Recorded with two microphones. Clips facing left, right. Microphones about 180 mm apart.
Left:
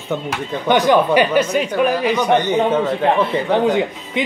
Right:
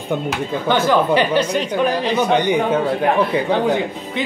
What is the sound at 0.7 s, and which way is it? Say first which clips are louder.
Speech: left 3 dB; 15° left (ahead or behind).